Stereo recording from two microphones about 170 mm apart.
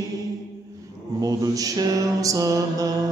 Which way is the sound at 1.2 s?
20° right (ahead or behind).